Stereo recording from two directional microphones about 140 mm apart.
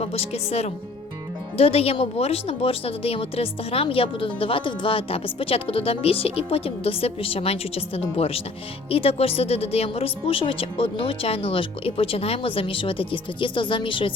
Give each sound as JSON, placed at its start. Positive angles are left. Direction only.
{"t": 0.0, "sound": "a woman's voice", "side_deg": 45}